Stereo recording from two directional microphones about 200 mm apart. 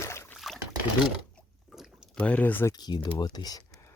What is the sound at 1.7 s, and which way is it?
Speech, centre (ahead or behind).